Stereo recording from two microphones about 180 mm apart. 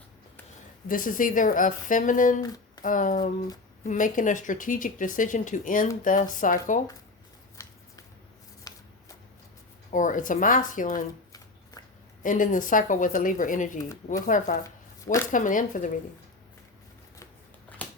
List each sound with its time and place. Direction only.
0.9 s speech: 50° left (ahead or behind)
2.4 s a sound: 20° left (ahead or behind)
2.8 s speech: 45° left (ahead or behind)
8.7 s shuffling cards: 20° left (ahead or behind)
9.9 s speech: 45° left (ahead or behind)
12.2 s speech: 45° left (ahead or behind)
17.8 s a sound: 10° left (ahead or behind)